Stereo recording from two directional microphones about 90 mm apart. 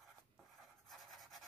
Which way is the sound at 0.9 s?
Centre (ahead or behind).